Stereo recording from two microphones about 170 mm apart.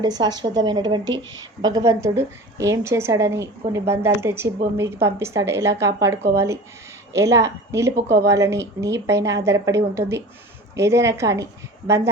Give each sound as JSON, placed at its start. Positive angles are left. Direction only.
{"t": 0.0, "sound": "a woman's voice", "side_deg": -25}